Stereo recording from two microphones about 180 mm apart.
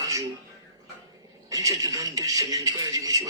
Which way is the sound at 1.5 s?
20° right (ahead or behind).